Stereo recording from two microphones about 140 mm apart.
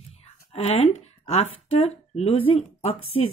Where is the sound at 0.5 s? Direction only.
50° left (ahead or behind).